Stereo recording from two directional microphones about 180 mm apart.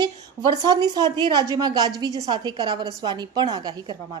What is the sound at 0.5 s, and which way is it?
A woman's voice, 20° right (ahead or behind).